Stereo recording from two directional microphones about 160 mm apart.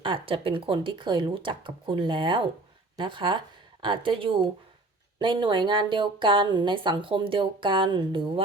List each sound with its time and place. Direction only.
0.0 s speech: 30° right (ahead or behind)